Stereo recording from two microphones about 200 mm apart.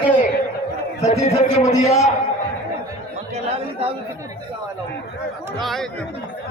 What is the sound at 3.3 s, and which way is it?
Speech, 30° right (ahead or behind).